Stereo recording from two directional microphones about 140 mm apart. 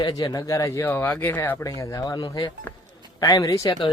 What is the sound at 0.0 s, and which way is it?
Speech, 30° left (ahead or behind).